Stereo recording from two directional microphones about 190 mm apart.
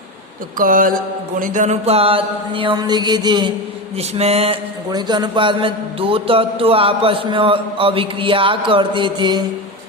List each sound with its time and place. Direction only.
0.6 s mantra: 45° right (ahead or behind)
1.4 s a man's voice: 40° right (ahead or behind); by 3.5 s 25° right (ahead or behind)
3.9 s mantra: 35° right (ahead or behind)
4.9 s a man's voice: 20° right (ahead or behind)